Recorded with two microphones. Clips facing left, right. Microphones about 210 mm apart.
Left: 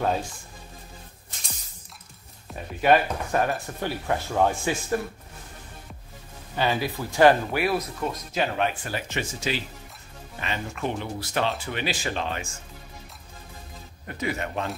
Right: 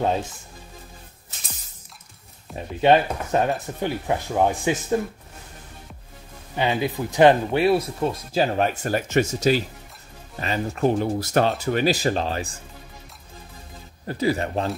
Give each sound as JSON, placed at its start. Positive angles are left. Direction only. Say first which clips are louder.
{"t": 2.5, "sound": "speech", "louder": "right 3 dB", "side_deg": -25}
{"t": 6.5, "sound": "speech", "louder": "right 2 dB", "side_deg": -20}
{"t": 14.0, "sound": "speech", "louder": "right 7 dB", "side_deg": -35}